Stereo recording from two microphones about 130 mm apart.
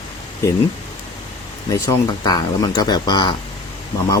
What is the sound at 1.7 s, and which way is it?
Speech, 30° left (ahead or behind).